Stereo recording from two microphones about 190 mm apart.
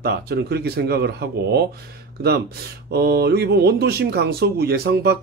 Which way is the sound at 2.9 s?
55° right (ahead or behind).